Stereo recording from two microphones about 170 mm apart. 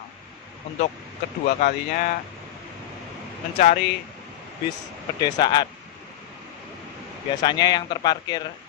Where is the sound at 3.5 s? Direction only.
50° left (ahead or behind).